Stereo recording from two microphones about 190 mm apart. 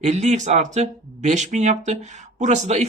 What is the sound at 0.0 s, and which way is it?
Speech, 35° right (ahead or behind).